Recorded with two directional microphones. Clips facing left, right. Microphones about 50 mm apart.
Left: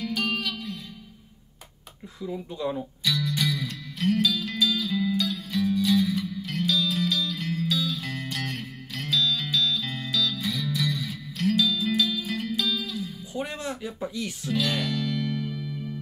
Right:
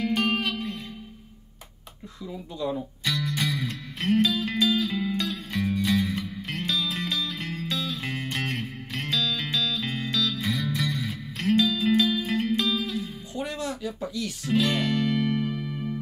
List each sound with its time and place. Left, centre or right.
0.4 s music: right
3.0 s music: right
13.4 s a sound: left
14.4 s music: right